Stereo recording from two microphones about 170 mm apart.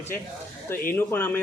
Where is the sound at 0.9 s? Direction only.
10° left (ahead or behind).